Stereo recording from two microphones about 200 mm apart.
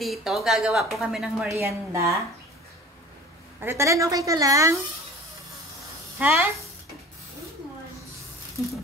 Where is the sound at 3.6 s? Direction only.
15° right (ahead or behind).